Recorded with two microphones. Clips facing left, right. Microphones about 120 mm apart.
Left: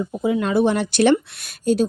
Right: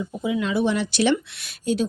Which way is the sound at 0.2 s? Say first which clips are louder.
Left 4 dB; 45° left (ahead or behind).